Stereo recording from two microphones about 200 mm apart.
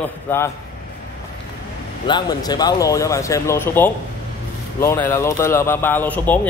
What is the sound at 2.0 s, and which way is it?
A man's voice, 20° left (ahead or behind).